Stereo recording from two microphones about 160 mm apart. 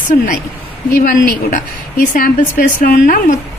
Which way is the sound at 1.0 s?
55° left (ahead or behind).